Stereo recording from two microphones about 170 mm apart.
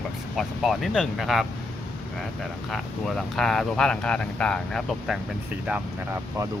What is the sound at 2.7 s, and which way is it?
Speech, centre (ahead or behind).